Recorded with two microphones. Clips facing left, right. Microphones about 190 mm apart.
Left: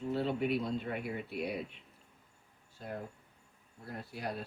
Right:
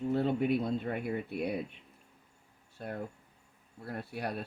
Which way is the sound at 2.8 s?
65° right (ahead or behind).